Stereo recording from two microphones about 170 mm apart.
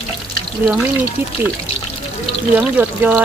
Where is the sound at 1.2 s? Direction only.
10° right (ahead or behind).